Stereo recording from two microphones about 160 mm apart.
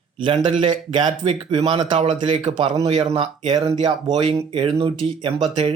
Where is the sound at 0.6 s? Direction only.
30° right (ahead or behind).